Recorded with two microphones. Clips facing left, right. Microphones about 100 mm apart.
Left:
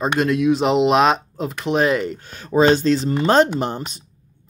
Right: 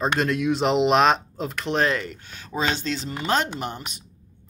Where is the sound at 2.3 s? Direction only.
45° left (ahead or behind).